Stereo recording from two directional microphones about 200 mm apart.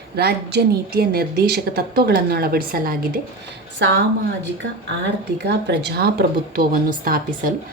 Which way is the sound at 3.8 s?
60° right (ahead or behind).